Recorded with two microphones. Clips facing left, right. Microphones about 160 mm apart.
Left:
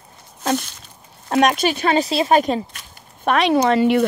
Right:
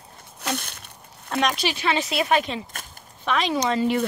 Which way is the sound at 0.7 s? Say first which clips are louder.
Right 2 dB; 60° right (ahead or behind).